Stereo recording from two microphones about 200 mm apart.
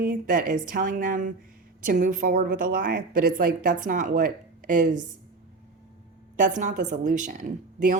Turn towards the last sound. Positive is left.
turn(degrees=-40)  # may be behind; listen again after turning